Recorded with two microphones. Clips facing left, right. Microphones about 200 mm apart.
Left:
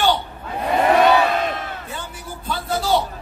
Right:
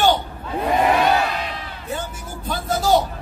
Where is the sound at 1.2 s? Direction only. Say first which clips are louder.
Left 5 dB; 50° left (ahead or behind).